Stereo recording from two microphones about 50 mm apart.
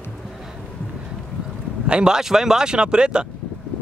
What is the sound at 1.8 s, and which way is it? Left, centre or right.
Speech, centre.